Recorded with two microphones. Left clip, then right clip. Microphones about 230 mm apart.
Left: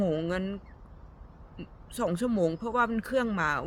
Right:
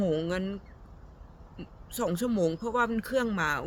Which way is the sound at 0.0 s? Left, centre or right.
Centre.